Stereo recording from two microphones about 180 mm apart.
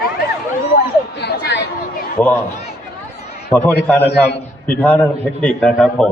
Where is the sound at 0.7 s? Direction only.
70° left (ahead or behind).